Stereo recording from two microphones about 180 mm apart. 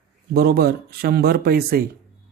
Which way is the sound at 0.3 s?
60° right (ahead or behind).